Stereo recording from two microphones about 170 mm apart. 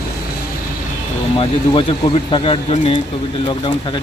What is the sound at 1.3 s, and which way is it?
Speech, 30° left (ahead or behind).